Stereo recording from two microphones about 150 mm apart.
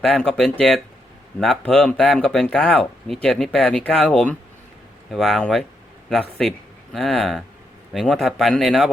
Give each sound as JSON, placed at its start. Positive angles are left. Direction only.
{"t": 0.1, "sound": "speech", "side_deg": 5}